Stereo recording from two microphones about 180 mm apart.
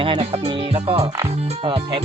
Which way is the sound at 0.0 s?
30° right (ahead or behind).